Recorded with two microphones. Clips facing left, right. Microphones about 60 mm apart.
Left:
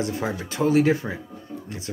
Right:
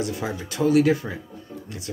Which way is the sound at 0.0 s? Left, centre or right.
Left.